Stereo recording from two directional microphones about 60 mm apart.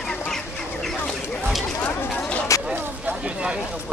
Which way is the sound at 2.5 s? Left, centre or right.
Left.